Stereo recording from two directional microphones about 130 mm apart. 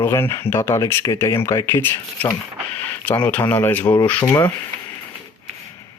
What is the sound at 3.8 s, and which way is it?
Speech, 30° left (ahead or behind).